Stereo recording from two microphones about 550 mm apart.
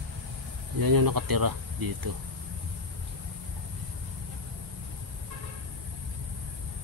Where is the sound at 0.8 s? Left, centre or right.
Right.